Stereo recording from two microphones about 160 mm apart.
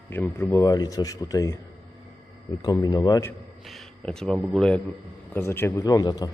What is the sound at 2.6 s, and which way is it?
Speech, 25° left (ahead or behind).